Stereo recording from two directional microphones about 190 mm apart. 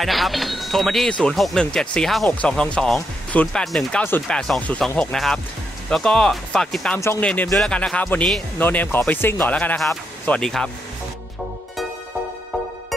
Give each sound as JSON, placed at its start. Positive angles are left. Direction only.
{"t": 0.0, "sound": "speech", "side_deg": 0}